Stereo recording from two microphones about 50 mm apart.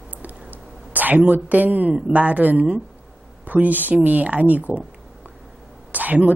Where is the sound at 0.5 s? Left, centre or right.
Right.